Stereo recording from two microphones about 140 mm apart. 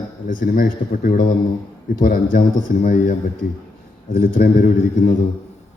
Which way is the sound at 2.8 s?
70° left (ahead or behind).